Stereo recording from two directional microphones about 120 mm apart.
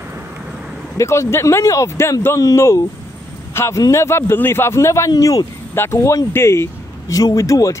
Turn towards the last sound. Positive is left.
turn(degrees=25)  # may be behind; listen again after turning